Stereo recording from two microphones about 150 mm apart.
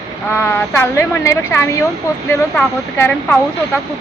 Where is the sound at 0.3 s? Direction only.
15° left (ahead or behind).